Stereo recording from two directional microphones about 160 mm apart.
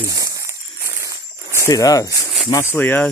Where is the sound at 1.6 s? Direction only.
20° left (ahead or behind).